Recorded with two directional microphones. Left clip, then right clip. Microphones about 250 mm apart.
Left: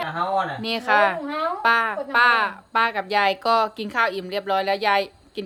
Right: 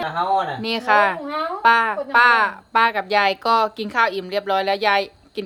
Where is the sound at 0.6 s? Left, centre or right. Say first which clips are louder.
Right 1 dB; centre.